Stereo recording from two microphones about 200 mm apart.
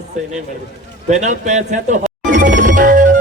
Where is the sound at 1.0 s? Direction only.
35° right (ahead or behind).